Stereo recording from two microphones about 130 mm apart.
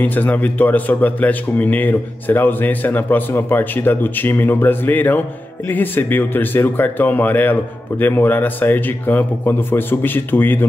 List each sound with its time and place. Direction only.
0.0 s a man's voice: 15° left (ahead or behind)